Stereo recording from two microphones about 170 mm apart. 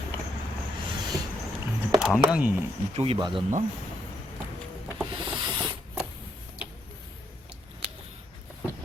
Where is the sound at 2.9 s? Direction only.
35° right (ahead or behind).